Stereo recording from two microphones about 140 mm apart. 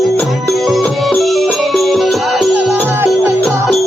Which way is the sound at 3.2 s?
20° right (ahead or behind).